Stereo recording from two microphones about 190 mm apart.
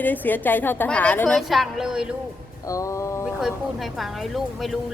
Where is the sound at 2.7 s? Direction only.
15° left (ahead or behind).